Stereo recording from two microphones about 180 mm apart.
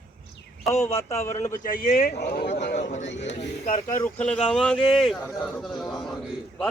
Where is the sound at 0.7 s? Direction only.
15° left (ahead or behind).